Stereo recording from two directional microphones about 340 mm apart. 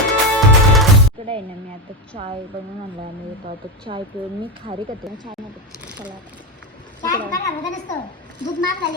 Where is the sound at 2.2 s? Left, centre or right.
Centre.